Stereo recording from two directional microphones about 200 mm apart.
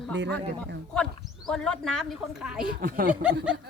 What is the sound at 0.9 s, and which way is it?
Speech, 5° left (ahead or behind).